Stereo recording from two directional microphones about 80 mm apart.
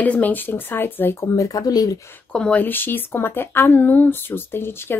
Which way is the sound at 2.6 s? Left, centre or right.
Left.